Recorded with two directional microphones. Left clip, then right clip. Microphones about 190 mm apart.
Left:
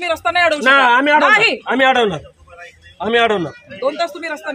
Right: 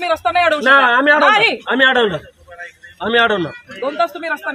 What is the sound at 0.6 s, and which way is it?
Speech, 35° left (ahead or behind).